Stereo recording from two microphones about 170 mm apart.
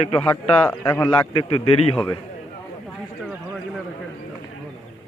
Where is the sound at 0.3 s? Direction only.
15° left (ahead or behind).